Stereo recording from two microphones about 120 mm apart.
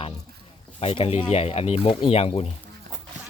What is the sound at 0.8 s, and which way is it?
Speech, 55° left (ahead or behind).